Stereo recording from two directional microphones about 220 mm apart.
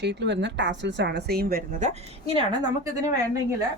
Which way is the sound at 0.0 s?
50° right (ahead or behind).